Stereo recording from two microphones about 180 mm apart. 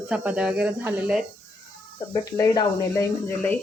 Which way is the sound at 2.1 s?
20° left (ahead or behind).